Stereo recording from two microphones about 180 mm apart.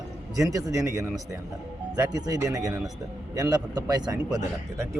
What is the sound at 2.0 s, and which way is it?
Speech, 20° right (ahead or behind).